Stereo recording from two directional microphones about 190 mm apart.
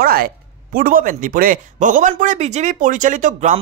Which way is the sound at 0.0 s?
50° right (ahead or behind).